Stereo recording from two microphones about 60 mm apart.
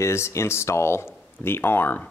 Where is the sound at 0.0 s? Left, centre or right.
Left.